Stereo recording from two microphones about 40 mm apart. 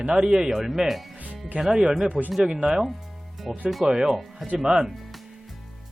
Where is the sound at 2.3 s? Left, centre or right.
Centre.